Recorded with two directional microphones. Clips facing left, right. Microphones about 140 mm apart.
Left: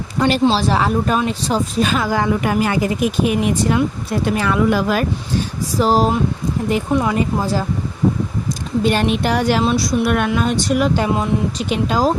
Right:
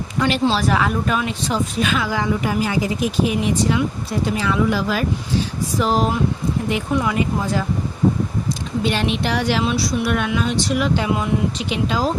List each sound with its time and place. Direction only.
0.2 s speech: 40° left (ahead or behind)
5.8 s speech: 35° left (ahead or behind)
8.8 s speech: 45° left (ahead or behind)